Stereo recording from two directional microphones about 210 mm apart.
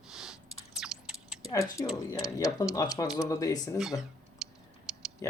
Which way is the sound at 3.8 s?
Centre (ahead or behind).